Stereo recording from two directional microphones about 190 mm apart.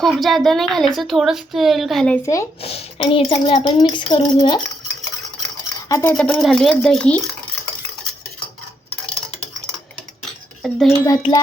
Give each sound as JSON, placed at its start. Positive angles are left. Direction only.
{"t": 0.0, "sound": "speech", "side_deg": 0}
{"t": 2.6, "sound": "a woman's voice", "side_deg": 30}
{"t": 5.9, "sound": "speech", "side_deg": 10}
{"t": 10.6, "sound": "speech", "side_deg": 0}
{"t": 11.0, "sound": "a woman's voice", "side_deg": 20}